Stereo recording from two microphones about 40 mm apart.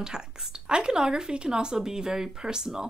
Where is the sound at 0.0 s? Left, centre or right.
Centre.